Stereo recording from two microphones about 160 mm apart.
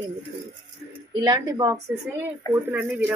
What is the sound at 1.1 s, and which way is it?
A woman's voice, 25° right (ahead or behind).